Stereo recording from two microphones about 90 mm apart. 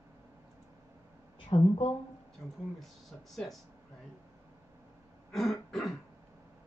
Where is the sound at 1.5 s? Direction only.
90° left.